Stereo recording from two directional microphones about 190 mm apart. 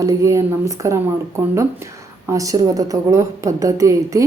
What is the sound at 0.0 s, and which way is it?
Speech, 20° right (ahead or behind).